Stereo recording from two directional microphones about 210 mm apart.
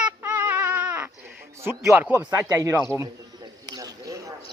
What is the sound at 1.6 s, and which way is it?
Speech, 10° right (ahead or behind).